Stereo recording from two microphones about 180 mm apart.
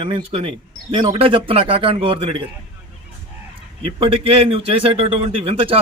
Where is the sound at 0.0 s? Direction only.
30° right (ahead or behind).